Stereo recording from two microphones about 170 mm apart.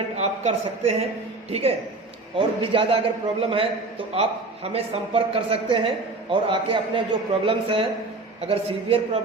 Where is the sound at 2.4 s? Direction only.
30° right (ahead or behind).